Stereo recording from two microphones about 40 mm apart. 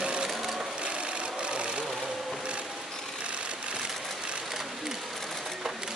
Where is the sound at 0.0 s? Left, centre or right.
Right.